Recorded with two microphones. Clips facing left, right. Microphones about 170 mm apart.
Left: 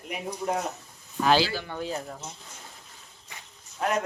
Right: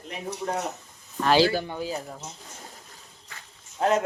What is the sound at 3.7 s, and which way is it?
Speech, 30° right (ahead or behind).